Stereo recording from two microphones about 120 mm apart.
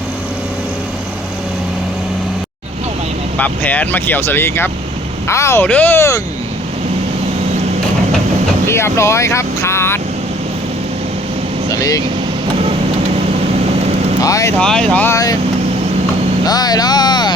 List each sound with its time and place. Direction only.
3.3 s speech: 15° left (ahead or behind)
8.6 s speech: 20° left (ahead or behind)
11.7 s speech: 30° left (ahead or behind)
14.2 s speech: 30° left (ahead or behind)
14.6 s speech: 5° left (ahead or behind)
15.0 s speech: 25° left (ahead or behind)
16.5 s speech: 35° left (ahead or behind)